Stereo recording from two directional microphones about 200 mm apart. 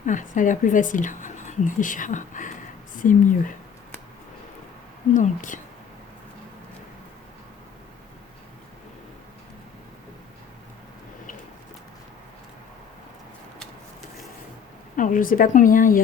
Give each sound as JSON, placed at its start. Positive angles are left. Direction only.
{"t": 0.0, "sound": "a woman's voice", "side_deg": 40}
{"t": 5.1, "sound": "speech", "side_deg": 40}
{"t": 14.9, "sound": "speech", "side_deg": 40}